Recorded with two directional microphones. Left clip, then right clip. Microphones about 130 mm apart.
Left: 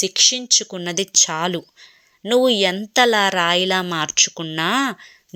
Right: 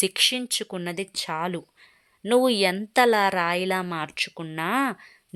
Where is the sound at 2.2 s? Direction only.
5° left (ahead or behind).